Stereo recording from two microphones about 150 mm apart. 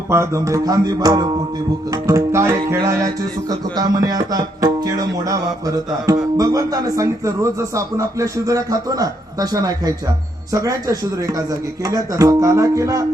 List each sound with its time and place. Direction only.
0.1 s speech: 20° right (ahead or behind)